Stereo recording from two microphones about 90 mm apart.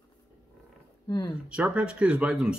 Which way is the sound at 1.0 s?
45° left (ahead or behind).